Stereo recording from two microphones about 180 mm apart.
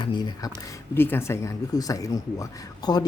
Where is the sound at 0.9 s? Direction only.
10° left (ahead or behind).